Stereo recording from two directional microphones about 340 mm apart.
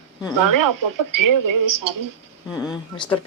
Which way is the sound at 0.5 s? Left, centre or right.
Right.